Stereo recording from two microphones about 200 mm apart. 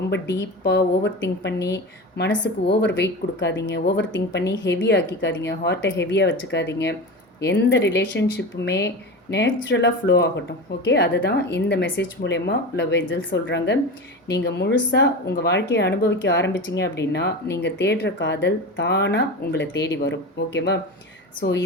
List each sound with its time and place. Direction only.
0.1 s speech: 60° left (ahead or behind)